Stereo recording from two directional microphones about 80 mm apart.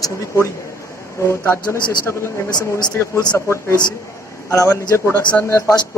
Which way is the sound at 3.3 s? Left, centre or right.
Left.